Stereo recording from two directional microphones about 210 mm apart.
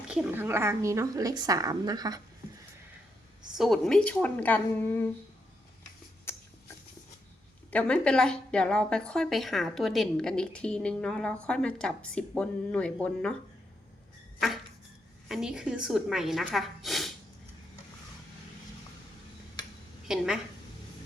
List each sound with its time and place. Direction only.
0.1 s a woman's voice: 5° right (ahead or behind)
3.6 s a woman's voice: centre (ahead or behind)
6.3 s a sound: 10° left (ahead or behind)
7.7 s a woman's voice: 5° left (ahead or behind)
15.3 s a woman's voice: 5° right (ahead or behind)
20.1 s a woman's voice: 5° right (ahead or behind)